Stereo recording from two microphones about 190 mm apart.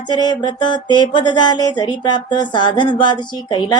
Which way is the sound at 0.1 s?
25° left (ahead or behind).